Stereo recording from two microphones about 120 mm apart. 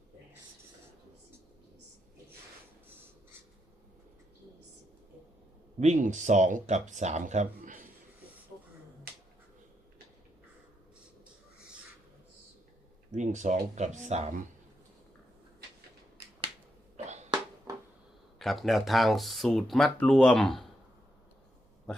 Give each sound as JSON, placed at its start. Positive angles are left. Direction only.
{"t": 5.8, "sound": "speech", "side_deg": -80}
{"t": 13.1, "sound": "speech", "side_deg": -90}
{"t": 18.3, "sound": "speech", "side_deg": 0}
{"t": 21.9, "sound": "a sound", "side_deg": 5}